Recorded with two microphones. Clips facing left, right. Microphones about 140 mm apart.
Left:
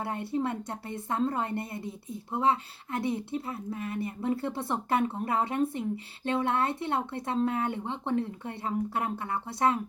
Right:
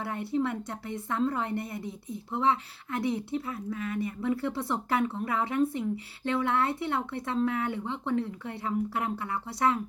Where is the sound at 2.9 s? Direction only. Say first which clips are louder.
Right 1 dB; 25° left (ahead or behind).